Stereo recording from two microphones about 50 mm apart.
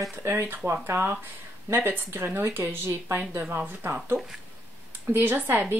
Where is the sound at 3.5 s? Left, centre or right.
Right.